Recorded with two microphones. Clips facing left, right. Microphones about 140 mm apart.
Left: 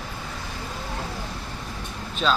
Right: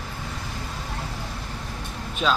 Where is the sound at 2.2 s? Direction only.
10° right (ahead or behind).